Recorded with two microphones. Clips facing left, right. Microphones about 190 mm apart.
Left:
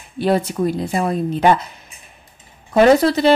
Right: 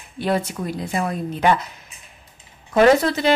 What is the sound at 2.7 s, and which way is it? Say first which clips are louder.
Speech: left 3 dB; 35° left (ahead or behind).